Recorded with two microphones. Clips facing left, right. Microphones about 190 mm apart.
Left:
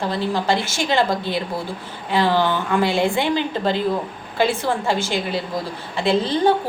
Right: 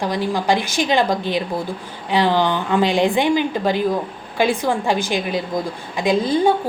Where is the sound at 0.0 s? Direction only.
15° right (ahead or behind).